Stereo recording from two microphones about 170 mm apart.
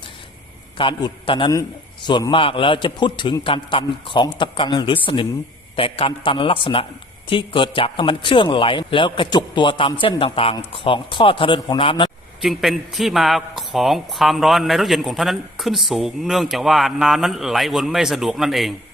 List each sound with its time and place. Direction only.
0.8 s a man's voice: 30° left (ahead or behind)
12.4 s a man's voice: centre (ahead or behind)